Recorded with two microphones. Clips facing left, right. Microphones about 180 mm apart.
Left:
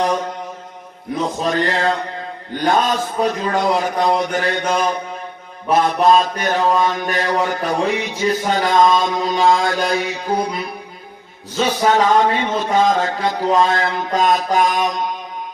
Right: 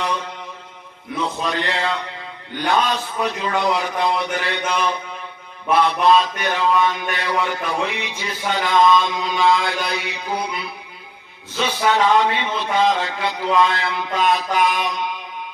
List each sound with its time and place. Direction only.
0.0 s mantra: 45° left (ahead or behind)